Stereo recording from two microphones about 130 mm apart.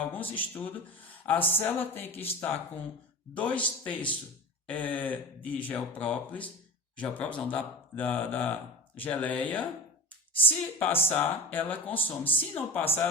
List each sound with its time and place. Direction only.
0.1 s speech: 15° left (ahead or behind)
3.3 s speech: 10° left (ahead or behind)